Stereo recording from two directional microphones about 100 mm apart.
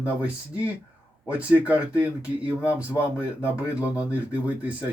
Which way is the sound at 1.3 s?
15° right (ahead or behind).